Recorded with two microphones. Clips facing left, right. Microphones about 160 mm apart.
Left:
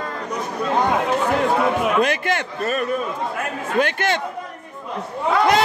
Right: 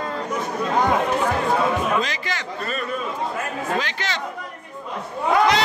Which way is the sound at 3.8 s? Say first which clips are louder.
Left 8 dB; 55° left (ahead or behind).